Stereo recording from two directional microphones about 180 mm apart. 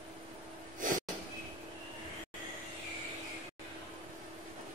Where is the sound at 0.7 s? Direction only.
45° right (ahead or behind).